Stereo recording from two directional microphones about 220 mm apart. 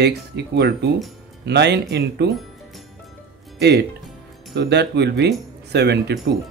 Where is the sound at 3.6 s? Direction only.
50° right (ahead or behind).